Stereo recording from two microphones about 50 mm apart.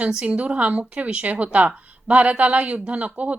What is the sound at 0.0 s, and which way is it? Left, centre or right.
A woman's voice, right.